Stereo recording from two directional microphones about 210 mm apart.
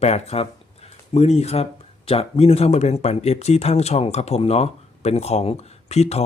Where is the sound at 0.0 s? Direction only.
30° left (ahead or behind).